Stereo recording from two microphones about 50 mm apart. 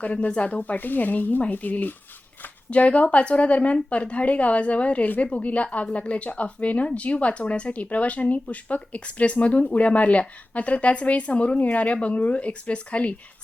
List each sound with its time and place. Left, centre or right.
0.0 s a woman's voice: left
0.6 s a woman's voice: left